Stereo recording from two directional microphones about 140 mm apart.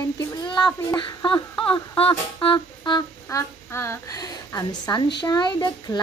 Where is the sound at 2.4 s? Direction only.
30° left (ahead or behind).